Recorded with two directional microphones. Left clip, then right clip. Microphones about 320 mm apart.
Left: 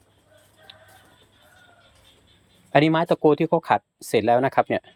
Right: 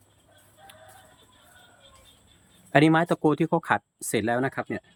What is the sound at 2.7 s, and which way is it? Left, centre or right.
Speech, centre.